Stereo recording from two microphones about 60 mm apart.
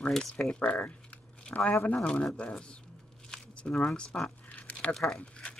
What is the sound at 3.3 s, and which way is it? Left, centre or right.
Squish, centre.